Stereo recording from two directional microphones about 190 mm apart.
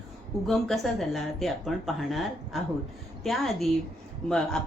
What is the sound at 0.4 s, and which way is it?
A woman's voice, centre (ahead or behind).